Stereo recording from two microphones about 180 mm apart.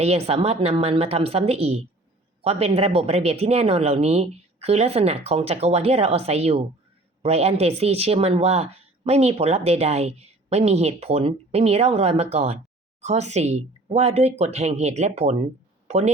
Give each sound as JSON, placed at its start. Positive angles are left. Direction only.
{"t": 0.0, "sound": "a woman's voice", "side_deg": -35}